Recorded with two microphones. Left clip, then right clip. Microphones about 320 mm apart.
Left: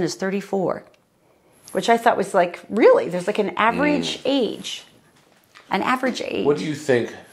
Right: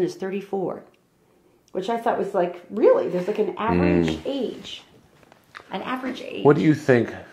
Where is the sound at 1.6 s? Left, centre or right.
Left.